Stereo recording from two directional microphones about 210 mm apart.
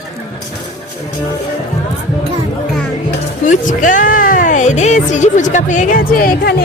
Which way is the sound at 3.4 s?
40° left (ahead or behind).